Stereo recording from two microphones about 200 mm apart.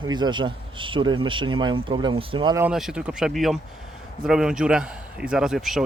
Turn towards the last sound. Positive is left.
turn(degrees=0)  # may be behind; listen again after turning